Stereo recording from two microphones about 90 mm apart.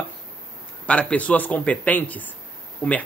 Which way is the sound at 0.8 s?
15° left (ahead or behind).